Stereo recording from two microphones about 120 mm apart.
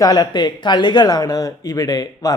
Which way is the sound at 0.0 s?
35° left (ahead or behind).